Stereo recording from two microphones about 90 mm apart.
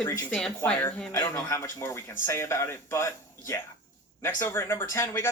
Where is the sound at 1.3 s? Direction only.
35° left (ahead or behind).